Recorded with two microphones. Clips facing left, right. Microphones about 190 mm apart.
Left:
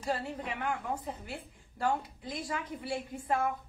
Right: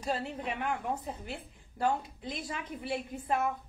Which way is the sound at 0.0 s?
20° right (ahead or behind).